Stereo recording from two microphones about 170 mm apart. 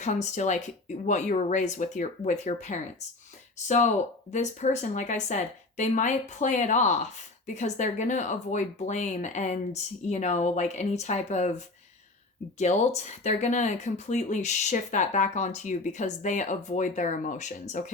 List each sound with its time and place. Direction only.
0.0 s speech: 45° left (ahead or behind)